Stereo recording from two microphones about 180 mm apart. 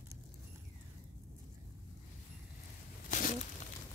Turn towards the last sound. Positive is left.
turn(degrees=45)  # may be behind; listen again after turning